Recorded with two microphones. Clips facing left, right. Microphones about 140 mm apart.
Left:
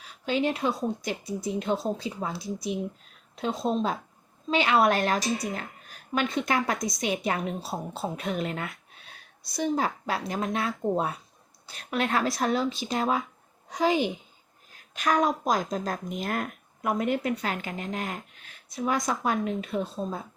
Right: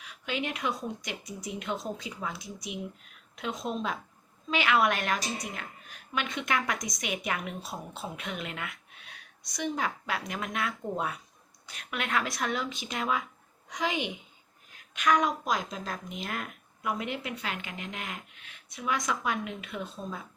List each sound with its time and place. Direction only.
0.0 s a woman's voice: 35° left (ahead or behind)